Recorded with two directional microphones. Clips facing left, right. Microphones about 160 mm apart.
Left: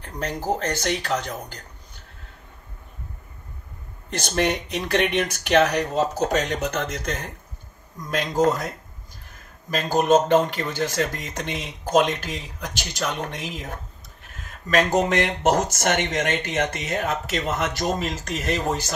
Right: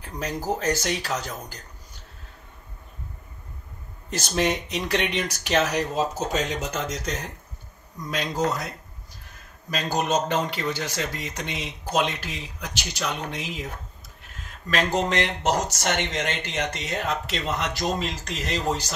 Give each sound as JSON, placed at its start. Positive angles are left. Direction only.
{"t": 0.0, "sound": "speech", "side_deg": 55}
{"t": 4.2, "sound": "speech", "side_deg": 60}
{"t": 9.8, "sound": "speech", "side_deg": 50}
{"t": 14.7, "sound": "speech", "side_deg": 45}